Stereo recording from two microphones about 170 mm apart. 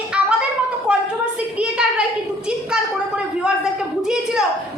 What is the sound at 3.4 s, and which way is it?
A woman's voice, 5° right (ahead or behind).